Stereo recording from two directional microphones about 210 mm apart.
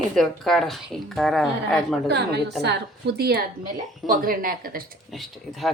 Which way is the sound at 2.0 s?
50° right (ahead or behind).